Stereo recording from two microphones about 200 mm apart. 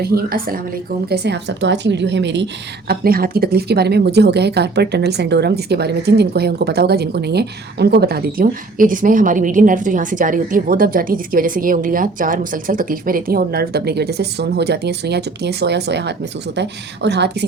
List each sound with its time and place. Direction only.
0.0 s a woman's voice: 50° right (ahead or behind)
1.1 s a woman's voice: 55° right (ahead or behind)